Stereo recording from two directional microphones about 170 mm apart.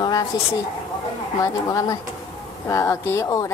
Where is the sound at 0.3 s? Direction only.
25° left (ahead or behind).